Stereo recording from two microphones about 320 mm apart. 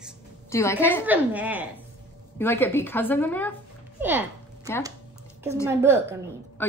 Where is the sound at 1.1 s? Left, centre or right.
Centre.